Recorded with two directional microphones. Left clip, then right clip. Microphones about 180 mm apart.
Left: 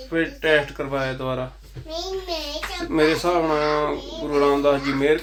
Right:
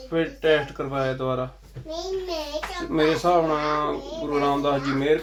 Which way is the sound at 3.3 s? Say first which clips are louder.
Left 1 dB; 20° left (ahead or behind).